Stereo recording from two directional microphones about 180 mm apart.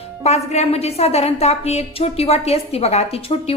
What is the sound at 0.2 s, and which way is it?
A woman's voice, 35° left (ahead or behind).